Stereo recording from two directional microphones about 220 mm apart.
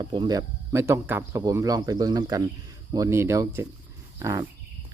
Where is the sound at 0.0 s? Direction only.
20° right (ahead or behind).